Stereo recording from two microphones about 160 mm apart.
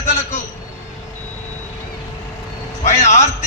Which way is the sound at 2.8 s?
45° left (ahead or behind).